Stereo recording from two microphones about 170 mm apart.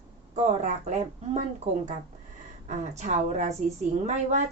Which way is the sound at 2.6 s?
45° right (ahead or behind).